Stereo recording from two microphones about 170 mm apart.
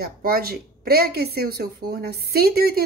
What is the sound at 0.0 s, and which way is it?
Speech, 60° right (ahead or behind).